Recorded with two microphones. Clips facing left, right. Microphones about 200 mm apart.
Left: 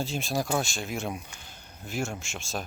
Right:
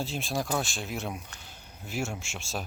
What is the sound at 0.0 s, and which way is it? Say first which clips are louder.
Speech: left 2 dB; centre (ahead or behind).